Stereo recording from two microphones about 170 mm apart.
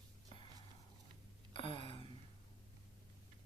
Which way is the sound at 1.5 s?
30° left (ahead or behind).